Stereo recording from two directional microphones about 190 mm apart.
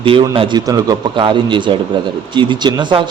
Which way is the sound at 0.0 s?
25° right (ahead or behind).